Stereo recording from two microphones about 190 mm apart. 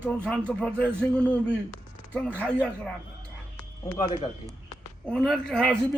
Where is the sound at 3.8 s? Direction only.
20° left (ahead or behind).